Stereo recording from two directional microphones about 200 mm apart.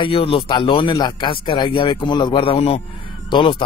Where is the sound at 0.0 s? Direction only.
25° left (ahead or behind).